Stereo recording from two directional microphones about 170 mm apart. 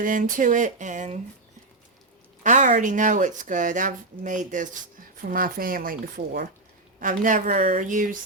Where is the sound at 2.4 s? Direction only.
45° right (ahead or behind).